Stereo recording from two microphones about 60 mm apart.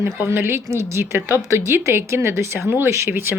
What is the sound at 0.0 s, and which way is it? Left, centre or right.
Speech, right.